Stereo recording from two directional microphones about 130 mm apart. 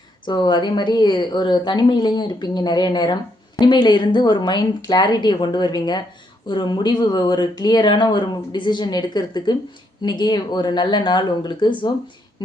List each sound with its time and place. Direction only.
0.3 s speech: 35° left (ahead or behind)